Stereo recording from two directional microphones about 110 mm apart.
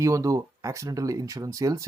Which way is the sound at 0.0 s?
30° right (ahead or behind).